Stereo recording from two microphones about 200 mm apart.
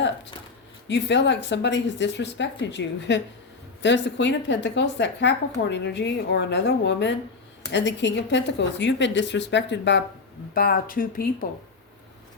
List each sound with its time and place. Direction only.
0.9 s speech: 60° left (ahead or behind)
10.5 s speech: 50° left (ahead or behind)